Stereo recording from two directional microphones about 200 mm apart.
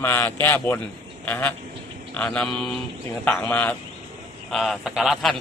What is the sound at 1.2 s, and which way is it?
Duck, 10° left (ahead or behind).